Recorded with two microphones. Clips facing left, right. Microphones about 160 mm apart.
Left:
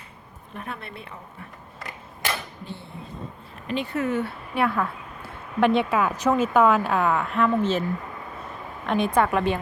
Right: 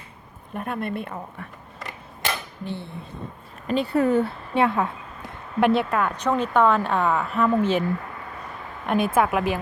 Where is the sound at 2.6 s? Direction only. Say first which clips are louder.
Right 6 dB; 65° right (ahead or behind).